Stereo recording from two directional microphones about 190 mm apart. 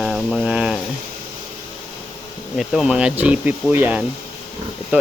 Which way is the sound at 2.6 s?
5° right (ahead or behind).